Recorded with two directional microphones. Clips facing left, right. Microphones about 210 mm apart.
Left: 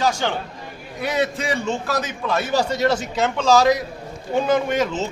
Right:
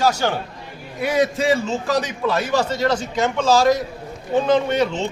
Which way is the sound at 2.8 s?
20° left (ahead or behind).